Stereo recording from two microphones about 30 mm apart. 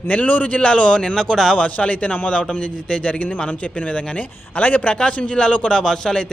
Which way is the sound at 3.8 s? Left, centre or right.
Left.